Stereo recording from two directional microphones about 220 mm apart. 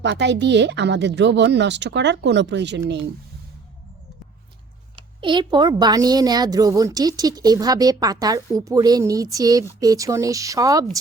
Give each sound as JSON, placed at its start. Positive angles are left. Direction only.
{"t": 0.0, "sound": "speech", "side_deg": -55}
{"t": 5.2, "sound": "a woman's voice", "side_deg": -20}